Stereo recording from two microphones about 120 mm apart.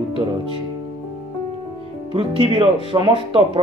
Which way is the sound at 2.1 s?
45° right (ahead or behind).